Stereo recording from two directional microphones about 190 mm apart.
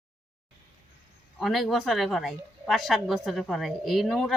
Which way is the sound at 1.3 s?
Centre (ahead or behind).